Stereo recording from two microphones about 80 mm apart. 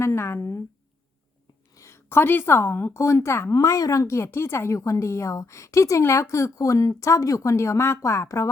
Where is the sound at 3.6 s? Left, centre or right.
Left.